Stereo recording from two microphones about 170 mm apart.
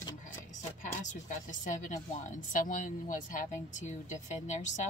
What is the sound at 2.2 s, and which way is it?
Speech, 50° left (ahead or behind).